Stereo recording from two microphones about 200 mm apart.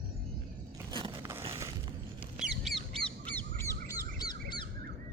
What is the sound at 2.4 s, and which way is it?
Bird, centre (ahead or behind).